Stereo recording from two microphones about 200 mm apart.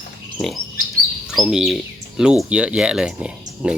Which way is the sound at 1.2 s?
Centre (ahead or behind).